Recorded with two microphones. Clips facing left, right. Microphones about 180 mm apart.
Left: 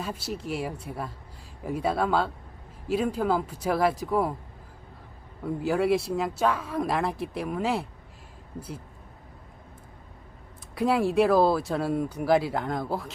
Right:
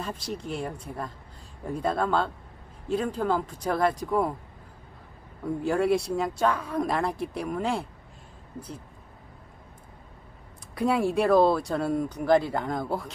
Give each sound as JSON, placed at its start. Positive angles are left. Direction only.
{"t": 0.0, "sound": "speech", "side_deg": 5}
{"t": 5.6, "sound": "speech", "side_deg": 0}
{"t": 10.8, "sound": "speech", "side_deg": 0}